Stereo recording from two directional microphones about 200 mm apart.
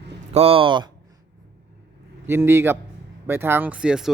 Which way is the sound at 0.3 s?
30° right (ahead or behind).